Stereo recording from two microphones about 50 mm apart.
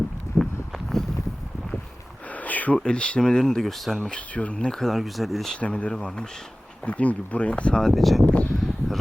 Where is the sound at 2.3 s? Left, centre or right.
Left.